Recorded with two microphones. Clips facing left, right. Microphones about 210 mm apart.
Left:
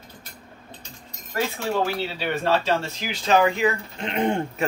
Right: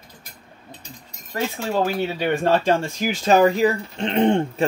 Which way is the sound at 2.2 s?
50° right (ahead or behind).